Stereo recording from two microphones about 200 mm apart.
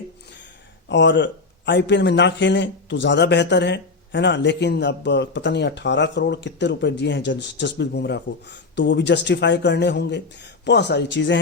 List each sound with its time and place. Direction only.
0.9 s speech: 60° left (ahead or behind)